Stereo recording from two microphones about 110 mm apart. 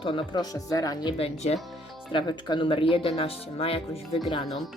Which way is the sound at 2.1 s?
45° left (ahead or behind).